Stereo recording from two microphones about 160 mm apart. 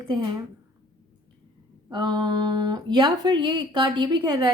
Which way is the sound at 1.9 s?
30° right (ahead or behind).